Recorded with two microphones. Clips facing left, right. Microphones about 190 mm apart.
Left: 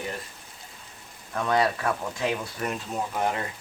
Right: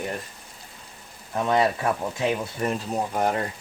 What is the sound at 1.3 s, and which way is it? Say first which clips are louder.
Speech: right 2 dB; 20° right (ahead or behind).